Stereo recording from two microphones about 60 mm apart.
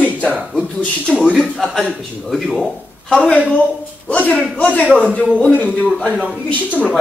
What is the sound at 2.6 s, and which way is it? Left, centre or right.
A man's voice, centre.